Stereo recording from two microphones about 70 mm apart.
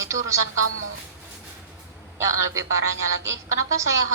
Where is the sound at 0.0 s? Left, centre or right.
Right.